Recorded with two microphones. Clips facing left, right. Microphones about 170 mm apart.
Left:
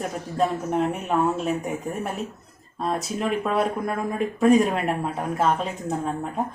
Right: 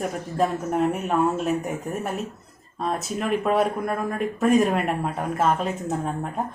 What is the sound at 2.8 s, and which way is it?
A woman's voice, centre (ahead or behind).